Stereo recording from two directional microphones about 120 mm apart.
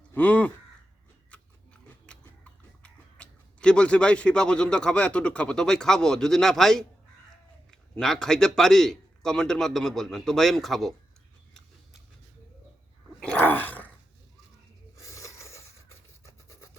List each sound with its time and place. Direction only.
0.1 s speech: 15° left (ahead or behind)
1.3 s biting: 10° left (ahead or behind)
7.7 s speech: 5° left (ahead or behind)
13.1 s dog: 10° left (ahead or behind)
14.9 s a sound: 25° left (ahead or behind)